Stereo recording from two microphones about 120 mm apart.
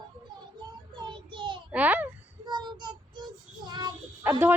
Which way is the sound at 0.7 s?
40° right (ahead or behind).